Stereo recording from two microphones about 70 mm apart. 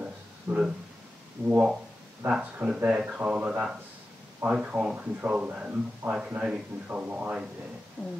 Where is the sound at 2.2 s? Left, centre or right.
Centre.